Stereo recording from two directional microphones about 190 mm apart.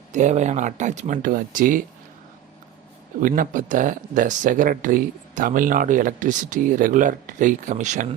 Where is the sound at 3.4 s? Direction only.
40° right (ahead or behind).